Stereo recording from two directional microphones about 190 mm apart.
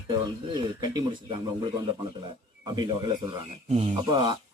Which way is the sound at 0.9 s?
20° right (ahead or behind).